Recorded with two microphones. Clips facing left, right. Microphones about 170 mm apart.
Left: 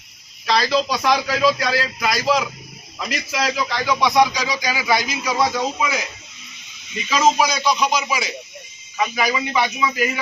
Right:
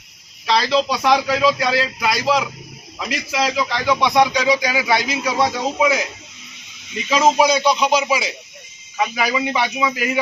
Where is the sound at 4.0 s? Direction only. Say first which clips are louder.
Even; 25° right (ahead or behind).